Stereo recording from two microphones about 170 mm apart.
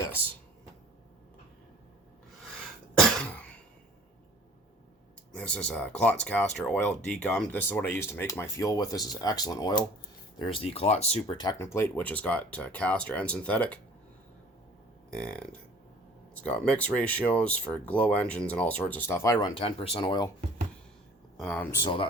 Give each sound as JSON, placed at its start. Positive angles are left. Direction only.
{"t": 2.9, "sound": "cough", "side_deg": 5}
{"t": 5.3, "sound": "speech", "side_deg": 5}
{"t": 11.6, "sound": "speech", "side_deg": 15}
{"t": 15.1, "sound": "speech", "side_deg": 5}
{"t": 19.5, "sound": "speech", "side_deg": 35}
{"t": 21.3, "sound": "speech", "side_deg": 5}